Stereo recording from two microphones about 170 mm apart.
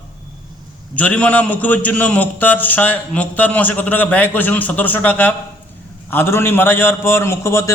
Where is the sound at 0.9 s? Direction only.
10° left (ahead or behind).